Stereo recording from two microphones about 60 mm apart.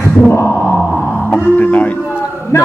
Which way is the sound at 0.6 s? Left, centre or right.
Centre.